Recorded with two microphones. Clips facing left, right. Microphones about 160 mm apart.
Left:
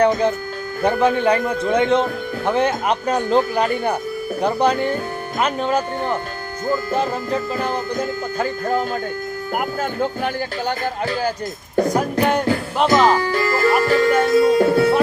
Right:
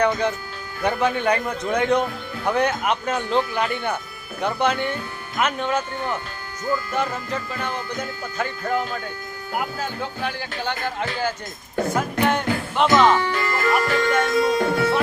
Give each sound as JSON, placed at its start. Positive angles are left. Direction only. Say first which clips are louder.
{"t": 0.0, "sound": "speech", "louder": "left 5 dB", "side_deg": 30}
{"t": 11.9, "sound": "music", "louder": "left 3 dB", "side_deg": 35}